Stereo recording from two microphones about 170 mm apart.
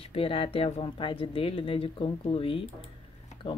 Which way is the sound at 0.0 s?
35° left (ahead or behind).